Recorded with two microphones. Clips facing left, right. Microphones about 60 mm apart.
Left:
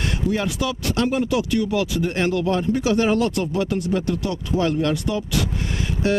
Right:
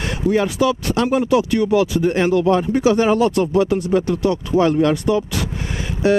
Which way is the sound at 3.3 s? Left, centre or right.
Right.